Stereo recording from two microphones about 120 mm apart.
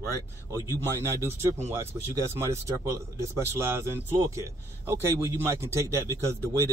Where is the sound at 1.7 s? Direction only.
25° right (ahead or behind).